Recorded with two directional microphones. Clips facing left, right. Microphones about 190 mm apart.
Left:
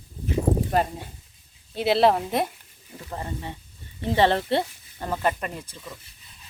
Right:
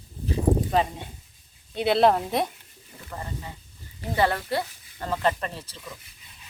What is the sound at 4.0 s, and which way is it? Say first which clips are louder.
Speech: left 4 dB; 25° left (ahead or behind).